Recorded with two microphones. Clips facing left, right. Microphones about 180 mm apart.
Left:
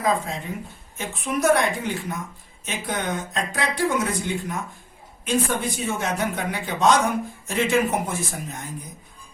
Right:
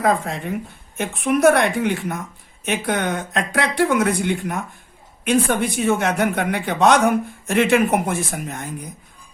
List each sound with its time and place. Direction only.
0.0 s speech: 65° right (ahead or behind)